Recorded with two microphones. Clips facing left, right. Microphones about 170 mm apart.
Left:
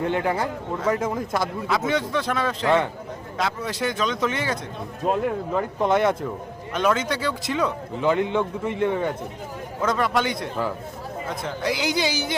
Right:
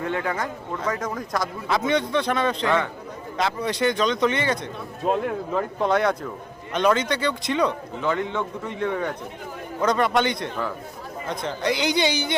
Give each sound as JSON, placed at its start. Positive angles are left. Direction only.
{"t": 0.1, "sound": "speech", "side_deg": 25}
{"t": 1.6, "sound": "a man's voice", "side_deg": 0}